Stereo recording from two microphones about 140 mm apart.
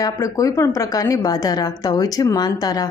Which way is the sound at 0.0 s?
25° left (ahead or behind).